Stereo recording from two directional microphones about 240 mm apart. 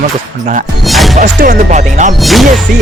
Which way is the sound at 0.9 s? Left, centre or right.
Centre.